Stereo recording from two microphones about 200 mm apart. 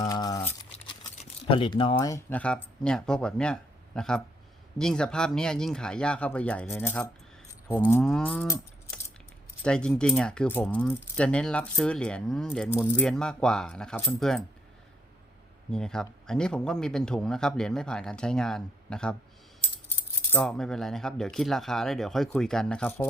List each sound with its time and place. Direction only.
0.0 s a sound: 20° left (ahead or behind)
0.7 s speech: 30° left (ahead or behind); by 7.1 s 10° left (ahead or behind)
7.8 s moo: 15° left (ahead or behind)
8.0 s cattle: 5° left (ahead or behind)
9.6 s speech: 5° left (ahead or behind)
15.7 s speech: 5° left (ahead or behind)